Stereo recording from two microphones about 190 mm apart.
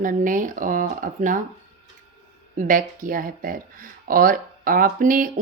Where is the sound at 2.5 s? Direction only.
45° right (ahead or behind).